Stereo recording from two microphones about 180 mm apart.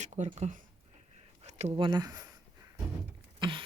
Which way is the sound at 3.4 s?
25° right (ahead or behind).